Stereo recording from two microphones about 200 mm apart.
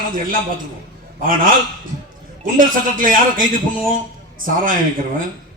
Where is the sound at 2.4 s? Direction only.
45° right (ahead or behind).